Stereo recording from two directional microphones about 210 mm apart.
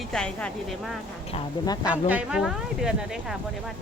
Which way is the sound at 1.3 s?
20° left (ahead or behind).